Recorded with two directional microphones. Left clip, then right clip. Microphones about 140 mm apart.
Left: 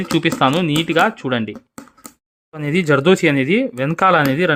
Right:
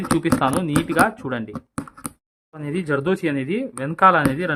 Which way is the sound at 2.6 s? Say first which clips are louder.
Left 8 dB; 50° left (ahead or behind).